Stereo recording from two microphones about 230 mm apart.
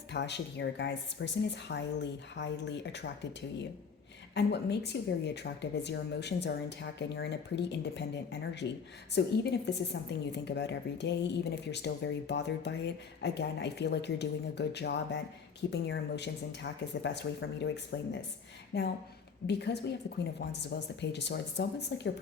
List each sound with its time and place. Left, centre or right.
0.1 s a woman's voice: left
4.4 s a woman's voice: left